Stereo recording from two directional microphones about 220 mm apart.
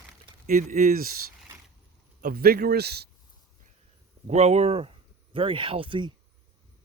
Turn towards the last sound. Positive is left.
turn(degrees=-25)  # may be behind; listen again after turning